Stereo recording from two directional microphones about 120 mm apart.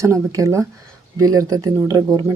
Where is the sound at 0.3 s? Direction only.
25° right (ahead or behind).